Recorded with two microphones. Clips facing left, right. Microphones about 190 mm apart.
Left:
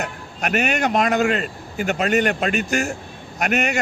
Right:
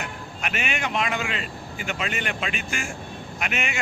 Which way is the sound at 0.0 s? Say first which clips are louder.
Left 6 dB; 40° left (ahead or behind).